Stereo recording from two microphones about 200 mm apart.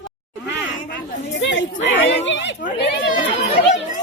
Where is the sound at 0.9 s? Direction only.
65° left (ahead or behind).